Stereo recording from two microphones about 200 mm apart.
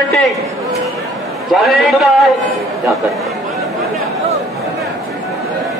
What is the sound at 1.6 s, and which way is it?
Speech, centre (ahead or behind).